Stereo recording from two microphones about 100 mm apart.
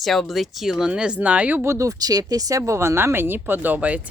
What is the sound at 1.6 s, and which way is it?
Speech, 30° right (ahead or behind).